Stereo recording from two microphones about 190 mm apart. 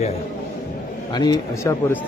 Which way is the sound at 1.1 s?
20° left (ahead or behind).